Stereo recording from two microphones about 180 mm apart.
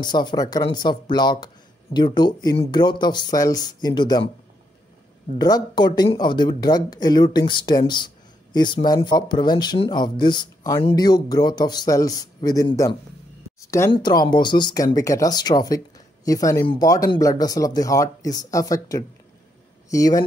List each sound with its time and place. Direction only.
0.0 s speech: 25° left (ahead or behind)
5.4 s speech: 25° left (ahead or behind)